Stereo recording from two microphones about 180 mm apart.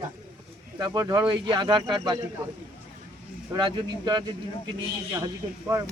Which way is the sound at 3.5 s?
25° right (ahead or behind).